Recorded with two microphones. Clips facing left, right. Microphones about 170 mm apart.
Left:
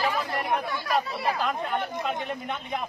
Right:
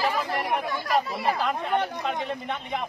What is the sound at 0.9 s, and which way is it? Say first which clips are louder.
A man's voice: right 2 dB; centre (ahead or behind).